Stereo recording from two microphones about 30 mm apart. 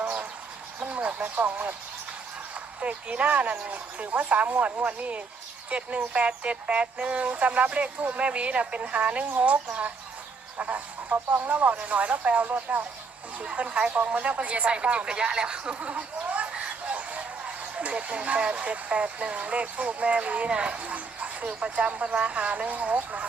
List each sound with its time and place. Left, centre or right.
0.9 s a sound: right
1.4 s speech: right
2.8 s speech: right
10.6 s speech: right
15.0 s speech: right
15.7 s speech: right
16.5 s chicken: right
16.8 s chicken: right
17.4 s a sound: right
18.3 s speech: right
20.5 s speech: right